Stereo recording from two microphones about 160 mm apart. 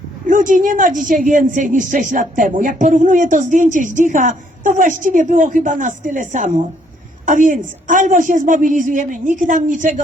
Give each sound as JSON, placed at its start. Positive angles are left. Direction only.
{"t": 0.3, "sound": "a woman's voice", "side_deg": -55}